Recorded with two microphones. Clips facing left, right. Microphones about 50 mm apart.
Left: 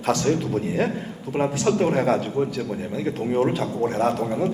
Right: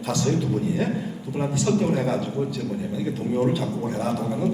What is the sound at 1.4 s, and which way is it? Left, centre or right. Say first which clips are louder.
Speech: left 2 dB; left.